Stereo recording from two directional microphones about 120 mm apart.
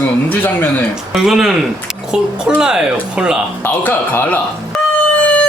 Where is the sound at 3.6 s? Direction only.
15° left (ahead or behind).